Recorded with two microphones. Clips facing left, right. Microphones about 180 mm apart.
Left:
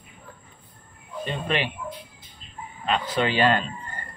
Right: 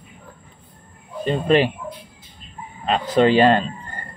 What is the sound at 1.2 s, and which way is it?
Speech, 40° right (ahead or behind).